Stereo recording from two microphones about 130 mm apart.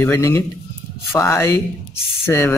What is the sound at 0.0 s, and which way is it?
A man's voice, 20° left (ahead or behind).